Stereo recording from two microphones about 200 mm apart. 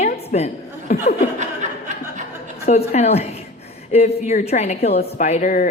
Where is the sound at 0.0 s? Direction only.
30° left (ahead or behind).